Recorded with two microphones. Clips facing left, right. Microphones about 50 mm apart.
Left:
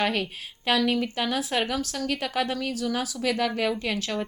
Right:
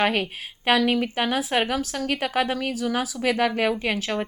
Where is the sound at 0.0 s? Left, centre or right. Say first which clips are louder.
Right 3 dB; right.